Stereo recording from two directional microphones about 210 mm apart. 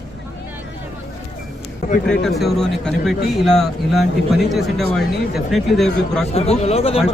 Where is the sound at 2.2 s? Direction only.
Centre (ahead or behind).